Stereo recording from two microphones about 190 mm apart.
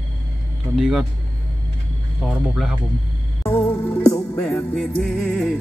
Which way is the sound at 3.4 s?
10° left (ahead or behind).